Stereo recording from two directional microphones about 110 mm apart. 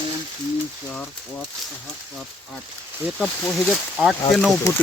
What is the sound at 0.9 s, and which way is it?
Speech, 15° left (ahead or behind).